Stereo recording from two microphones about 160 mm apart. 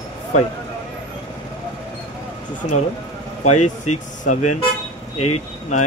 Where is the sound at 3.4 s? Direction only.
50° left (ahead or behind).